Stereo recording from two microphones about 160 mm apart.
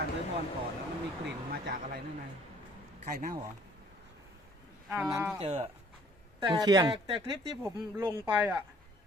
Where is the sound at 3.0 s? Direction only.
60° right (ahead or behind).